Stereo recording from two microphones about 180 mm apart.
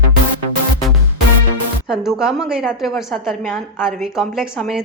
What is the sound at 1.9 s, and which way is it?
A woman's voice, 5° right (ahead or behind).